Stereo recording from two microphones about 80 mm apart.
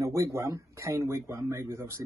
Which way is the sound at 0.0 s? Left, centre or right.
Right.